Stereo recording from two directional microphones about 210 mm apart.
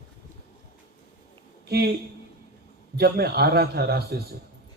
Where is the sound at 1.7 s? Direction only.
50° right (ahead or behind).